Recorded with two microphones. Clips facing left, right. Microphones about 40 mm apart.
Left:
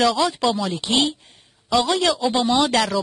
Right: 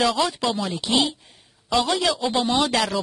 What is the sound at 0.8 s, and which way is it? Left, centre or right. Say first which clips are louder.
Speech: left 1 dB; centre.